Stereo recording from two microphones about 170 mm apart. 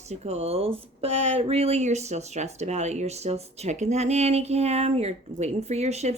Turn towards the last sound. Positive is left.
turn(degrees=-40)  # may be behind; listen again after turning